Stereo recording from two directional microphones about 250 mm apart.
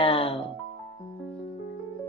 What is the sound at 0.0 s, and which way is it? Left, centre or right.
Music, left.